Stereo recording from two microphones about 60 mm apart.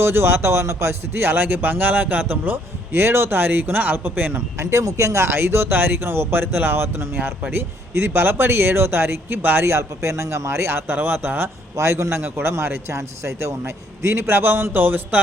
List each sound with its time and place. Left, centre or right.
0.0 s speech: right
11.8 s a man's voice: right